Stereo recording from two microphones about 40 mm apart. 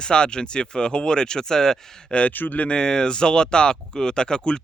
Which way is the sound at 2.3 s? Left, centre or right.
Left.